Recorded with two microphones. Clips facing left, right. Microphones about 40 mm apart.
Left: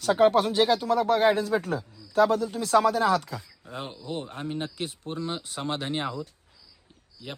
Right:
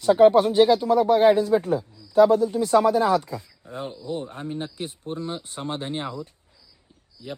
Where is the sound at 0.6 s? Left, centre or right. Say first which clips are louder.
Right 7 dB; centre.